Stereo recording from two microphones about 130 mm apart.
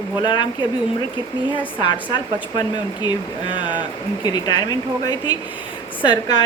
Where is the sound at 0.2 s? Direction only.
35° left (ahead or behind).